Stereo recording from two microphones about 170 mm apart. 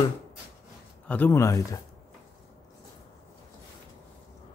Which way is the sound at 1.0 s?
10° left (ahead or behind).